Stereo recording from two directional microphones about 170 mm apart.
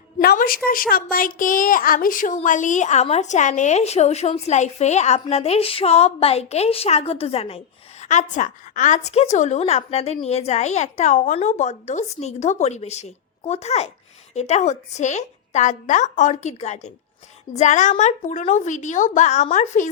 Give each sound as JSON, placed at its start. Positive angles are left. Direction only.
{"t": 0.2, "sound": "a woman's voice", "side_deg": 65}
{"t": 8.0, "sound": "a woman's voice", "side_deg": 45}